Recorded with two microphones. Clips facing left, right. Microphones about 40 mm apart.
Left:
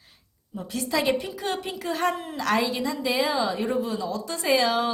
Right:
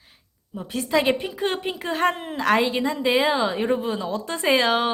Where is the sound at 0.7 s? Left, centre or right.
Right.